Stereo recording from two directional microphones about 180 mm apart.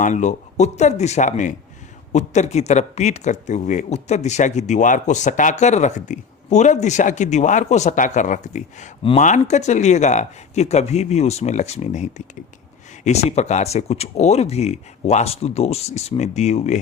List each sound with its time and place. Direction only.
0.0 s speech: 40° left (ahead or behind)